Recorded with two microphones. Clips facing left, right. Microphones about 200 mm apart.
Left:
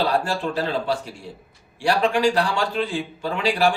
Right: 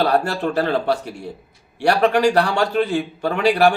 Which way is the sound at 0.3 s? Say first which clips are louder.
Right 4 dB; 60° right (ahead or behind).